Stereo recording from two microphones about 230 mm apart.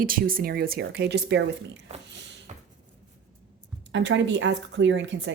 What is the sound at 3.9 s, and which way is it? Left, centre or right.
Speech, right.